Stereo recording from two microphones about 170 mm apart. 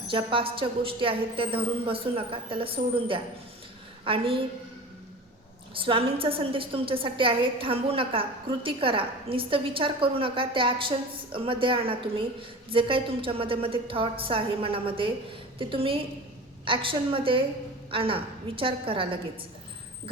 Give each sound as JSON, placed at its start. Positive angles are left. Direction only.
{"t": 0.1, "sound": "a woman's voice", "side_deg": -30}
{"t": 5.7, "sound": "a woman's voice", "side_deg": -30}